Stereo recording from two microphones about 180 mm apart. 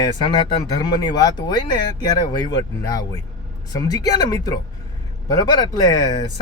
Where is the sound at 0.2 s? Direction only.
25° left (ahead or behind).